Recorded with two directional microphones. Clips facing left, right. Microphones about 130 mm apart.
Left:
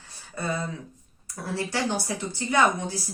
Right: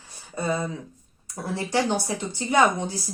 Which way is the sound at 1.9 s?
20° right (ahead or behind).